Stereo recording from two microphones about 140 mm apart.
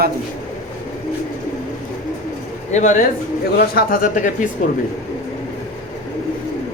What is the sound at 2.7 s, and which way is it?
Speech, 60° left (ahead or behind).